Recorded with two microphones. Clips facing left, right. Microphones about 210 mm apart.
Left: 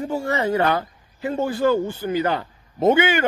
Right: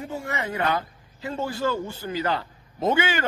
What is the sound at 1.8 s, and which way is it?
Speech, 25° left (ahead or behind).